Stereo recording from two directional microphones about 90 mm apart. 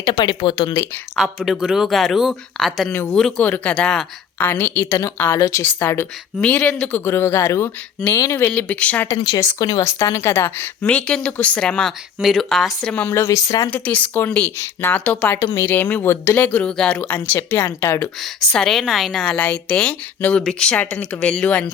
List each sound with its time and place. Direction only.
0.0 s speech: 55° left (ahead or behind)
1.1 s speech: centre (ahead or behind)
3.3 s a woman's voice: 15° left (ahead or behind)
8.6 s a woman's voice: 15° left (ahead or behind)
9.6 s speech: 45° left (ahead or behind)
10.0 s speech: 25° left (ahead or behind)
10.8 s a woman's voice: 10° left (ahead or behind)
12.9 s a woman's voice: 15° left (ahead or behind)
13.1 s speech: 35° left (ahead or behind)
13.7 s a woman's voice: 15° left (ahead or behind)
16.4 s a woman's voice: 10° left (ahead or behind)
18.3 s a woman's voice: 5° left (ahead or behind)